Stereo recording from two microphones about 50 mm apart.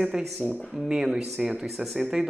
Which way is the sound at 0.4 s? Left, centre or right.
Right.